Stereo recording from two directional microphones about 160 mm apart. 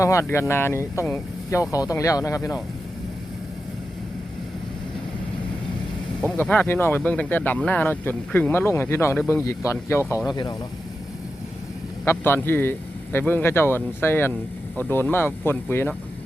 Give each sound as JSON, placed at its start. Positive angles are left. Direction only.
{"t": 0.0, "sound": "speech", "side_deg": 20}
{"t": 6.2, "sound": "speech", "side_deg": 10}
{"t": 12.0, "sound": "speech", "side_deg": 15}